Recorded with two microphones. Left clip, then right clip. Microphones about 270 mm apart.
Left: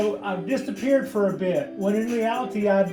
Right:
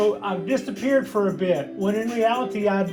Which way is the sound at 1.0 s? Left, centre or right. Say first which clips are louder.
Right 1 dB; centre.